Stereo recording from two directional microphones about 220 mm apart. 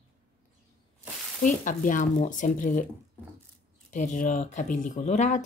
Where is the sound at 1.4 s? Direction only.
35° left (ahead or behind).